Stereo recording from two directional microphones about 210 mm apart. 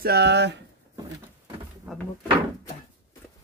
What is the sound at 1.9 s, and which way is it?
Speech, centre (ahead or behind).